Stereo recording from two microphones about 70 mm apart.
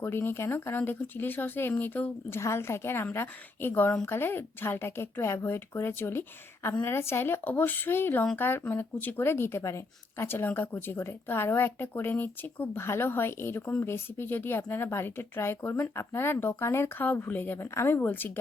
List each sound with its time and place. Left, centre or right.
0.0 s a woman's voice: left
17.7 s a woman's voice: left
18.0 s a woman's voice: left